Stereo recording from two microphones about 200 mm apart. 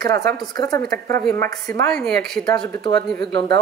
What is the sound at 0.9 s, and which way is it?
Speech, 50° right (ahead or behind).